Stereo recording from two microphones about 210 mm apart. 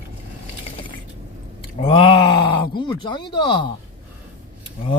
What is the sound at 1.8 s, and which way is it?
Speech, 25° left (ahead or behind).